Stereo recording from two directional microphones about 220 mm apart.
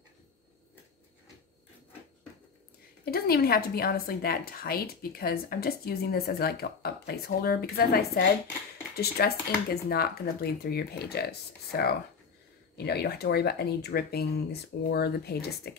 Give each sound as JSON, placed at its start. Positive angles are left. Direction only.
{"t": 3.1, "sound": "a woman's voice", "side_deg": 45}